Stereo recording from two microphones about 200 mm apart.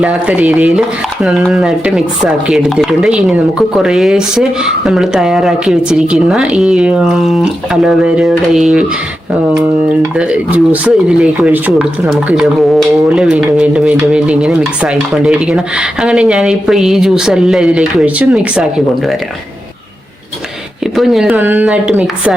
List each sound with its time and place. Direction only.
0.0 s speech: 5° right (ahead or behind)
10.2 s speech: 5° right (ahead or behind)
20.9 s speech: centre (ahead or behind)